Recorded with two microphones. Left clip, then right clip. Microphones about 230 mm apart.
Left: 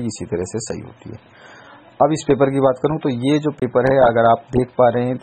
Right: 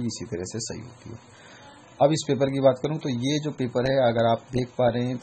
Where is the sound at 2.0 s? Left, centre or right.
Centre.